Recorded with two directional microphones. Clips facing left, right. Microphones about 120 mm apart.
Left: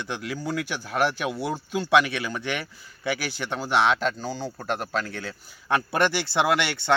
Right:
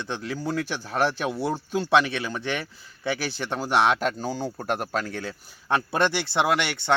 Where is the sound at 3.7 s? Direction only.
40° right (ahead or behind).